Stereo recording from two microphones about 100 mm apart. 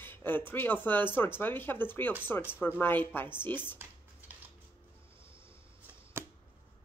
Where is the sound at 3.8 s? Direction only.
20° right (ahead or behind).